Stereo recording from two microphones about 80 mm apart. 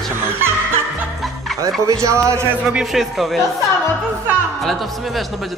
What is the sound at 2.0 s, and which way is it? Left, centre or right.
Speech, right.